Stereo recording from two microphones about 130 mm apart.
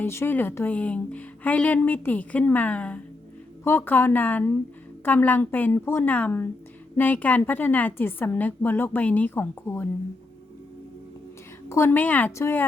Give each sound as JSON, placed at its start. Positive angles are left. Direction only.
{"t": 0.0, "sound": "a woman's voice", "side_deg": 20}
{"t": 11.7, "sound": "a woman's voice", "side_deg": 20}